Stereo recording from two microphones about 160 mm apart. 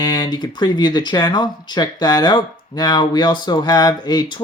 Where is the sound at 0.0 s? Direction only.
25° left (ahead or behind).